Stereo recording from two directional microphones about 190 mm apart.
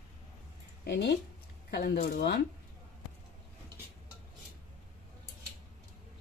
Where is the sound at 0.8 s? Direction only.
60° left (ahead or behind).